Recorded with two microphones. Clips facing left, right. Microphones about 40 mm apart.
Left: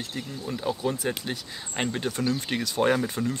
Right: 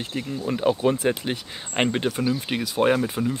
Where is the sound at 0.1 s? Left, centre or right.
Right.